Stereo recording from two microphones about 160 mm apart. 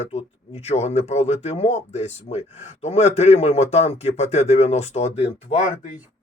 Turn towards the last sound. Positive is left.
turn(degrees=45)  # may be behind; listen again after turning